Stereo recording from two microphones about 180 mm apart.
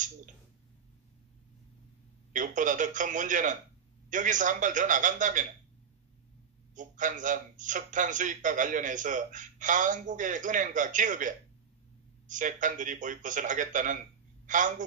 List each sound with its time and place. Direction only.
2.3 s a man's voice: 45° right (ahead or behind)
6.7 s a man's voice: 45° right (ahead or behind)